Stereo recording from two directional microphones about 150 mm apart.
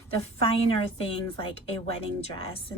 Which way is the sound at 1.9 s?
40° left (ahead or behind).